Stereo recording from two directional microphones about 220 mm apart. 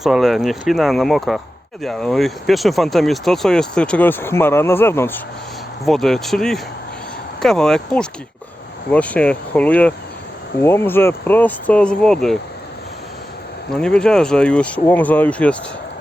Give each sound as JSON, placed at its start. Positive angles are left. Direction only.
{"t": 0.0, "sound": "speech", "side_deg": 0}
{"t": 13.7, "sound": "speech", "side_deg": 5}